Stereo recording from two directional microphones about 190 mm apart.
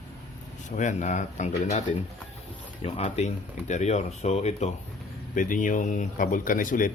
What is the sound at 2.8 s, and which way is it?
Speech, 35° left (ahead or behind).